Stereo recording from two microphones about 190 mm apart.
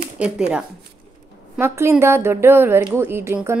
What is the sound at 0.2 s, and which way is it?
A woman's voice, 5° right (ahead or behind).